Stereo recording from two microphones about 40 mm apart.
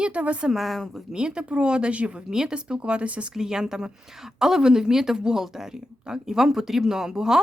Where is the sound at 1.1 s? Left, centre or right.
Right.